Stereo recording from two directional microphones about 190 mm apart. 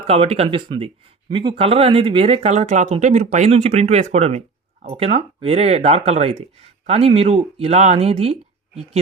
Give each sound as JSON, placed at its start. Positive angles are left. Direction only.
{"t": 0.1, "sound": "speech", "side_deg": -30}